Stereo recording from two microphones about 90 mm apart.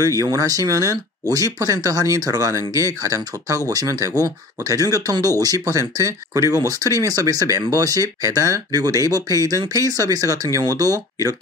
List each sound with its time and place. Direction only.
0.2 s speech: 40° right (ahead or behind)